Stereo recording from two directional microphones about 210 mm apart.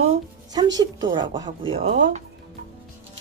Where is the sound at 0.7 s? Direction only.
20° right (ahead or behind).